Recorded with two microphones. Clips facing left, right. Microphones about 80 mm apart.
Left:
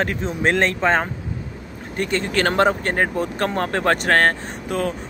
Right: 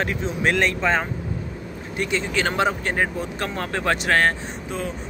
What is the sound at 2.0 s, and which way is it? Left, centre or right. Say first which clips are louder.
Speech: left 3 dB; left.